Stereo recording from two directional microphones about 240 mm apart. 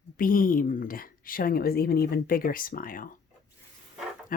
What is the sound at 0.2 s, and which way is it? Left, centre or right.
Speech, left.